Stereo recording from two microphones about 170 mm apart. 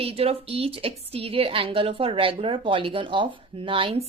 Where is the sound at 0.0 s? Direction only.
35° right (ahead or behind).